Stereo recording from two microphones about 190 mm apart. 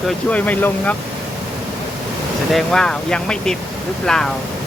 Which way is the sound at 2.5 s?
Centre (ahead or behind).